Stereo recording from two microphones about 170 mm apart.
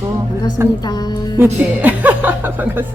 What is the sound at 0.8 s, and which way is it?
Speech, 25° left (ahead or behind).